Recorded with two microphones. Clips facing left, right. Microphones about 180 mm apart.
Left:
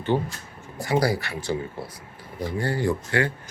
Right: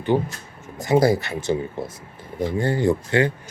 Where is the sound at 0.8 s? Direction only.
20° right (ahead or behind).